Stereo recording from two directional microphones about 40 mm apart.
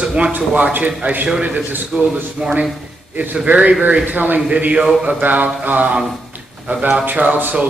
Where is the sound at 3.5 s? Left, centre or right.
Right.